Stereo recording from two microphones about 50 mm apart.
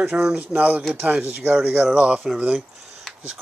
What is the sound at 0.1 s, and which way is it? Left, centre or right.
Speech, centre.